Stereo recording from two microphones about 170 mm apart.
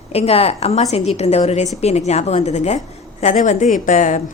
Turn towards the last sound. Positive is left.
turn(degrees=50)  # may be behind; listen again after turning